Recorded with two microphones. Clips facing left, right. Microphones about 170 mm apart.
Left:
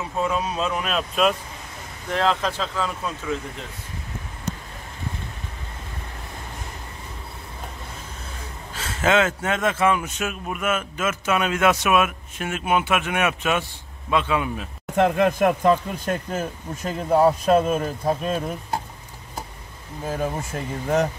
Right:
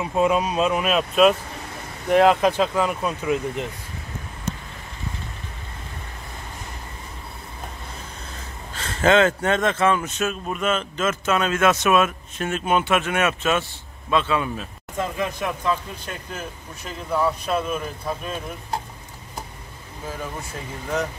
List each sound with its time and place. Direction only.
0.0 s speech: 15° right (ahead or behind)
2.0 s speech: 15° right (ahead or behind)
8.7 s speech: 5° left (ahead or behind)
15.0 s speech: 65° left (ahead or behind); by 18.4 s 40° left (ahead or behind)